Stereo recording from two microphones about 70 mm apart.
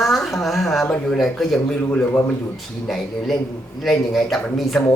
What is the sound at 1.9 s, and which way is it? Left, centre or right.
Speech, left.